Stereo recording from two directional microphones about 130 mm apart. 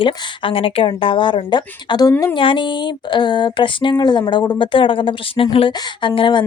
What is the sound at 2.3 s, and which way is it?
Speech, 40° left (ahead or behind).